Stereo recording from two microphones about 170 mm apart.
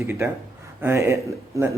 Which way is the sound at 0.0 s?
15° right (ahead or behind).